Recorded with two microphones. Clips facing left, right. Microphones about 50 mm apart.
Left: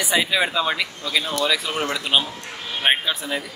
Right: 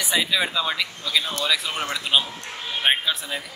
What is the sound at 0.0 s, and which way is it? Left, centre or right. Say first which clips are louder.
Speech: left 2 dB; centre.